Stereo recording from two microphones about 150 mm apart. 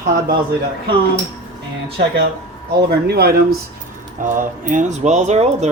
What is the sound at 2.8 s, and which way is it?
Speech, 90° right.